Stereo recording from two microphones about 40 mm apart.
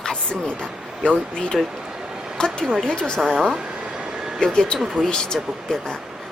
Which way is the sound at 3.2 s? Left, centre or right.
Right.